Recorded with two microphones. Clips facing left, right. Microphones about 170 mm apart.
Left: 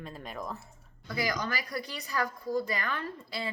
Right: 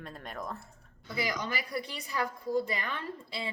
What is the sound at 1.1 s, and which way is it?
A woman's voice, 25° right (ahead or behind).